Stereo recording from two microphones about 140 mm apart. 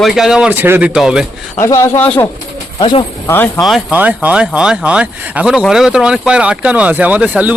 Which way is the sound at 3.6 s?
5° right (ahead or behind).